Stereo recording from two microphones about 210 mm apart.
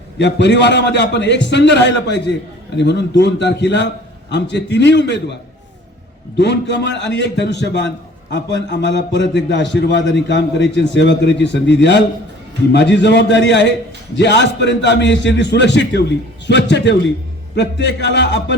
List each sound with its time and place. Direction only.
0.2 s a man's voice: 55° left (ahead or behind)
6.3 s a man's voice: 55° left (ahead or behind)